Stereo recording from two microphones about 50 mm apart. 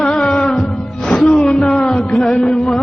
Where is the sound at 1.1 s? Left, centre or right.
Centre.